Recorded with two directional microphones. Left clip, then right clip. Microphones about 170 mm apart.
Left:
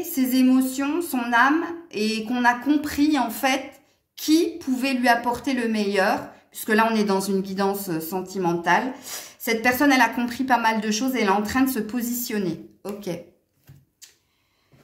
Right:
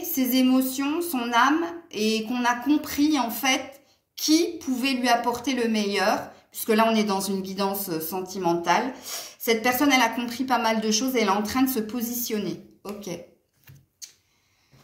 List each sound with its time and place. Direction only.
0.1 s a woman's voice: 50° left (ahead or behind)